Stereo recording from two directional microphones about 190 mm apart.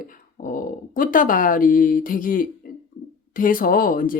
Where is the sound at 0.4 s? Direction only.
45° left (ahead or behind).